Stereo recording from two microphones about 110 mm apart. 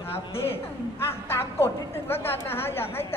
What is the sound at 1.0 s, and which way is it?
Speech, 25° left (ahead or behind).